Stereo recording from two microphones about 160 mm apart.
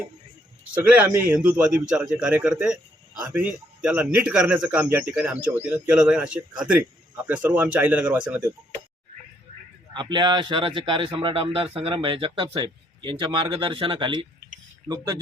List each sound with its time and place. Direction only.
0.7 s speech: 10° right (ahead or behind)
9.9 s speech: 30° right (ahead or behind)